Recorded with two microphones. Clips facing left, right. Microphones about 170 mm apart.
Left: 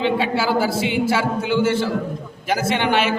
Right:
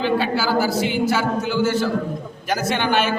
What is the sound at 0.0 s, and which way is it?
A woman's voice, 25° left (ahead or behind).